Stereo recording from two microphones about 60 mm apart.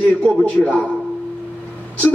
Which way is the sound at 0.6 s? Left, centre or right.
Centre.